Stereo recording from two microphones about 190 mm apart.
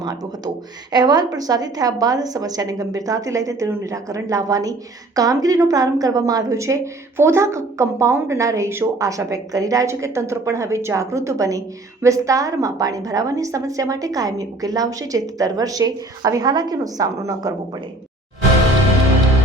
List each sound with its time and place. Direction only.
0.0 s a woman's voice: 20° right (ahead or behind)